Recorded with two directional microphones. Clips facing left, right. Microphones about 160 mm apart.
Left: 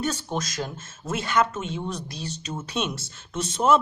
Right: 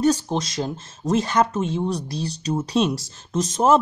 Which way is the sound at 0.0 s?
35° right (ahead or behind).